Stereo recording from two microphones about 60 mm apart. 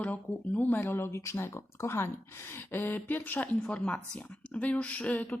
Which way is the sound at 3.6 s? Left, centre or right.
Centre.